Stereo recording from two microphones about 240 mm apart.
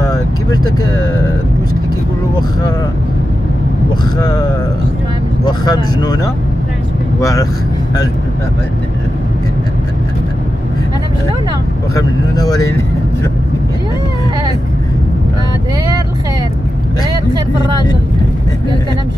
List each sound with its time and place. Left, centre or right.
0.0 s vehicle: centre
4.2 s speech: centre
11.9 s speech: centre